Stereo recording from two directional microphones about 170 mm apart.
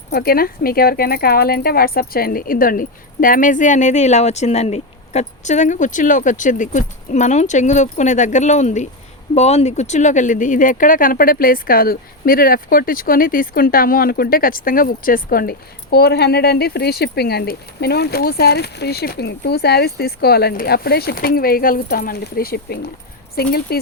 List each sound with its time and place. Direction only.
0.1 s speech: 65° left (ahead or behind)